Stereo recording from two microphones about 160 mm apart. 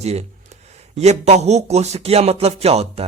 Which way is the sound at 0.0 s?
40° right (ahead or behind).